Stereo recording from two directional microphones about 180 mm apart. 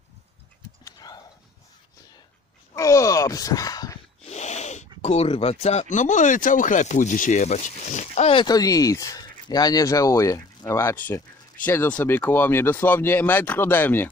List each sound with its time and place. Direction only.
0.9 s horse: 20° left (ahead or behind)
2.7 s speech: 15° left (ahead or behind)
4.2 s speech: 40° left (ahead or behind); by 14.1 s 10° left (ahead or behind)